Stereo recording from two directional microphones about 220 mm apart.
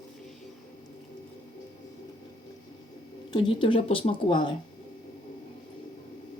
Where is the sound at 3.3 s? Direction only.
20° left (ahead or behind).